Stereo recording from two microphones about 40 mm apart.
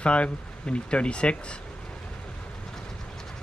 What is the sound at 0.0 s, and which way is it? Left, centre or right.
Speech, left.